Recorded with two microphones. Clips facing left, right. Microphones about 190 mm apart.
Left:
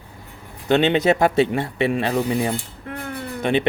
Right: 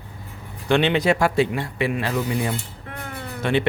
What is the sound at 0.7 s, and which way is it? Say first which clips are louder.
Speech: left 2 dB; 25° left (ahead or behind).